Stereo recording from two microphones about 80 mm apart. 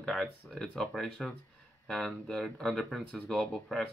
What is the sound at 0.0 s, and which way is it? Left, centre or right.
Speech, centre.